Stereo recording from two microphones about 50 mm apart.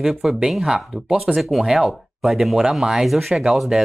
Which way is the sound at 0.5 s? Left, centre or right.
Centre.